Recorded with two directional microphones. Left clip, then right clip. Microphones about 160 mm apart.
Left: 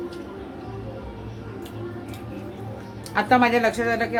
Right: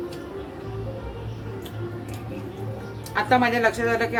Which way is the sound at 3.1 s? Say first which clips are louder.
Left 2 dB; 30° left (ahead or behind).